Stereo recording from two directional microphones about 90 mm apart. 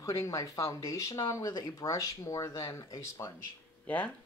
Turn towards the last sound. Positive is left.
turn(degrees=15)  # may be behind; listen again after turning